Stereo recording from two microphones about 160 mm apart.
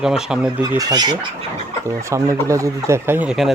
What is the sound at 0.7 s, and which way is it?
Speech, 25° right (ahead or behind).